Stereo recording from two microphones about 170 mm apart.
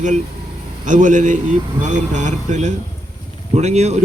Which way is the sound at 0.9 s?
50° right (ahead or behind).